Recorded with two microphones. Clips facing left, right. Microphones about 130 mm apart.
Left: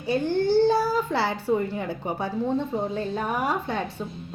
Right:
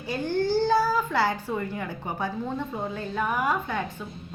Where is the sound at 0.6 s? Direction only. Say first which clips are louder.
Left 2 dB; 25° left (ahead or behind).